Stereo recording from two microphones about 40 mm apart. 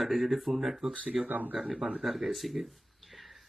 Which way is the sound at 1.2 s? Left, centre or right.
Right.